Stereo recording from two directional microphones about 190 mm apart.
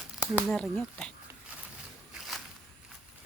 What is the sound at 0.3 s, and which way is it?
Speech, centre (ahead or behind).